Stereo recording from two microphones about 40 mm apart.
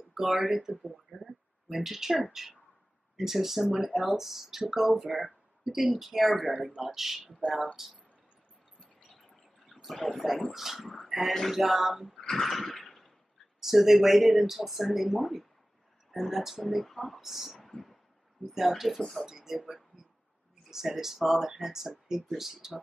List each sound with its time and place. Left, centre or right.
0.1 s speech: centre
9.1 s a sound: centre
9.9 s speech: centre
12.4 s a sound: centre
13.6 s speech: centre
16.6 s speech: centre
17.2 s speech: centre
17.6 s a sound: centre
18.4 s speech: centre
18.9 s speech: centre
19.2 s speech: centre